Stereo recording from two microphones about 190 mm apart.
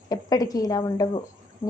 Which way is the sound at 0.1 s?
20° left (ahead or behind).